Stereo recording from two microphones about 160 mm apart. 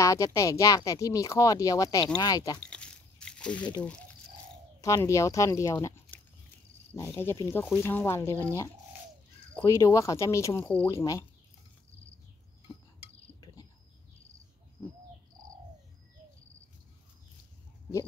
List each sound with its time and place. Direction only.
0.0 s speech: 20° left (ahead or behind)
2.7 s biting: 5° left (ahead or behind)
4.8 s speech: 20° left (ahead or behind)
9.7 s speech: 20° left (ahead or behind)